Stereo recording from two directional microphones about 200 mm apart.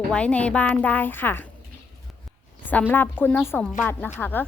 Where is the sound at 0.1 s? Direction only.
5° left (ahead or behind).